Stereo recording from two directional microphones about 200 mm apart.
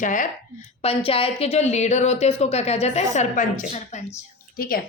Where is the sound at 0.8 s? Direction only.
30° left (ahead or behind).